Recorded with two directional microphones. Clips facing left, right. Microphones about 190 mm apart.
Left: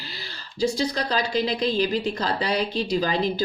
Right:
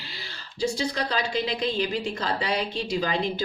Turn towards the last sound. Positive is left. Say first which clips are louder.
# left 3 dB
turn(degrees=35)  # may be behind; listen again after turning